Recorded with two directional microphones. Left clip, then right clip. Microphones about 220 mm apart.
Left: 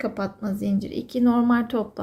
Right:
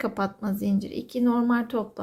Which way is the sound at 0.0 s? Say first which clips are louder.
Even; 15° right (ahead or behind).